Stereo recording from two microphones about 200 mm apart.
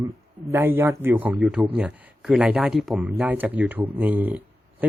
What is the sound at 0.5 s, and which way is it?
Speech, 10° right (ahead or behind).